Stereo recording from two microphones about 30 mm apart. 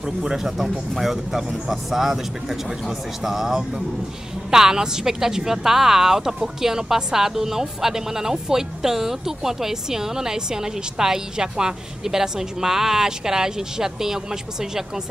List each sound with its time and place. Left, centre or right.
0.0 s speech: right
0.4 s speech: centre